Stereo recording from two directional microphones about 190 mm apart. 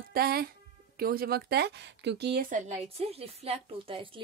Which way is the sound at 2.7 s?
30° right (ahead or behind).